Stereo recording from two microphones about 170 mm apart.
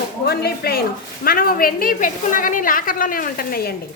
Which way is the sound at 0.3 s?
65° left (ahead or behind).